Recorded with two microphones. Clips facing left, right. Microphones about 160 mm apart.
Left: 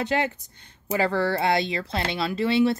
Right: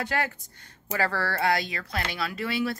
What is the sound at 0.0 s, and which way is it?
Speech, 20° left (ahead or behind).